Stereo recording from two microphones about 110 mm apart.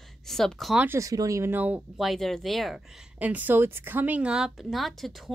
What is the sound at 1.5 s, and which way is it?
Speech, 15° right (ahead or behind).